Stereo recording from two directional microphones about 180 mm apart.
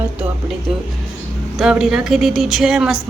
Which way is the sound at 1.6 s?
5° right (ahead or behind).